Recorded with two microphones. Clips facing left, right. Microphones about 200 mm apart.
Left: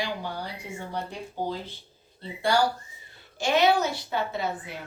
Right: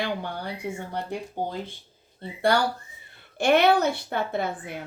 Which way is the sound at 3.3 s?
60° right (ahead or behind).